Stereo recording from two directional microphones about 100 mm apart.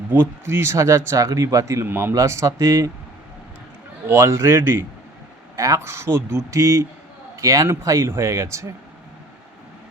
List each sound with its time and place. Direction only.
0.1 s a man's voice: 25° right (ahead or behind)
4.0 s a man's voice: 30° right (ahead or behind)